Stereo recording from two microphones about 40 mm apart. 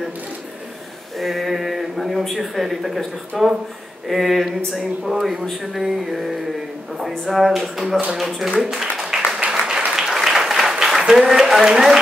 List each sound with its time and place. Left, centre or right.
1.2 s speech: centre
9.5 s applause: centre
9.9 s a sound: centre